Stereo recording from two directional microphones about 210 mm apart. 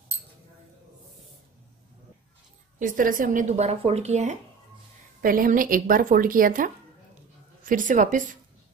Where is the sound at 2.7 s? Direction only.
40° right (ahead or behind).